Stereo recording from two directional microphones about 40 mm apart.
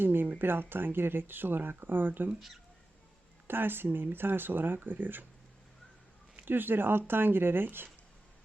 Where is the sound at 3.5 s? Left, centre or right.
Right.